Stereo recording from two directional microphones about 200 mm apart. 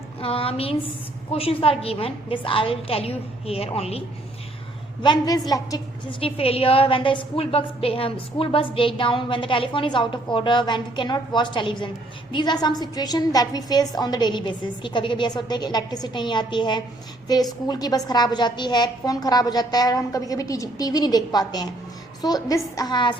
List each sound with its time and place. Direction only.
0.2 s a woman's voice: 30° left (ahead or behind)
5.0 s a woman's voice: 20° left (ahead or behind)